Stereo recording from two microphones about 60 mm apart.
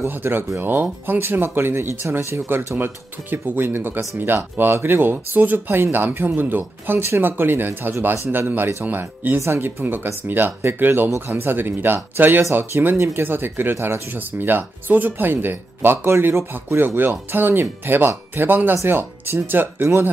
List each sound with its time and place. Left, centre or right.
0.1 s speech: right
14.1 s speech: right